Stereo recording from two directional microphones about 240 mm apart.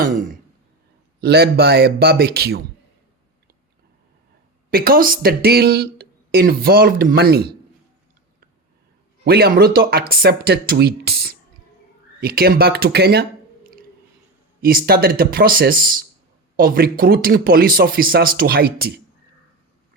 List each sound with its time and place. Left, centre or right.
0.0 s throat clearing: right
1.2 s speech: right
4.7 s speech: right
9.2 s speech: right
14.6 s speech: right